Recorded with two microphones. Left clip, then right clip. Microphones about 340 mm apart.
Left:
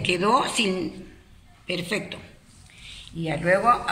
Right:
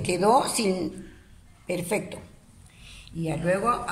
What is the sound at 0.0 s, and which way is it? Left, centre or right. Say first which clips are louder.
A woman's voice: even; centre.